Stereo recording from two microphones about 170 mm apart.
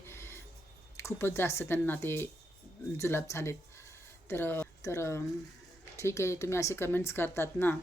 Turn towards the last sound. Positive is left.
turn(degrees=15)  # may be behind; listen again after turning